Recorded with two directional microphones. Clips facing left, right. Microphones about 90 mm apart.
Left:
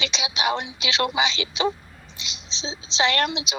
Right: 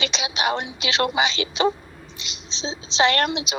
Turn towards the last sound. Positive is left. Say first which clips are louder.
# right 3 dB
turn(degrees=-50)  # may be behind; listen again after turning